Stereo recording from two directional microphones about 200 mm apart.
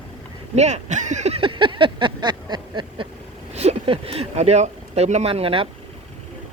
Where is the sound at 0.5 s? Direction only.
35° right (ahead or behind).